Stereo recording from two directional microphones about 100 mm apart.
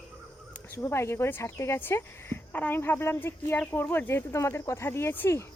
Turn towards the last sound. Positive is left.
turn(degrees=25)  # may be behind; listen again after turning